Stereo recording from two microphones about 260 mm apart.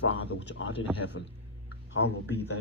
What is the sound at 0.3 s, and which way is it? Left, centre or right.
Speech, left.